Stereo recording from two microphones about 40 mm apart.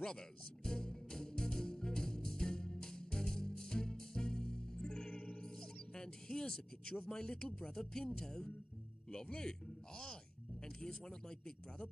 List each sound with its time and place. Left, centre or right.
0.7 s music: centre
9.1 s a man's voice: centre